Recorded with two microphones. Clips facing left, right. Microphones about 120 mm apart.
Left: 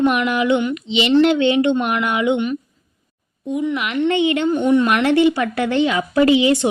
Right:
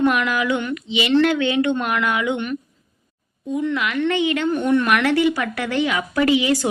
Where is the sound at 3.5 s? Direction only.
20° left (ahead or behind).